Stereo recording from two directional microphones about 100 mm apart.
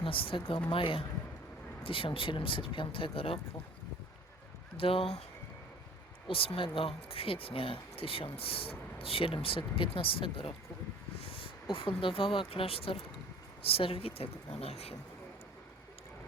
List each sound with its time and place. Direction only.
0.0 s speech: 65° left (ahead or behind)
4.8 s speech: 65° left (ahead or behind)
6.2 s speech: 70° left (ahead or behind)